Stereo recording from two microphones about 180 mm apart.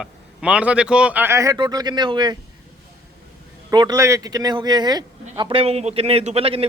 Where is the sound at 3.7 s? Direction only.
20° right (ahead or behind).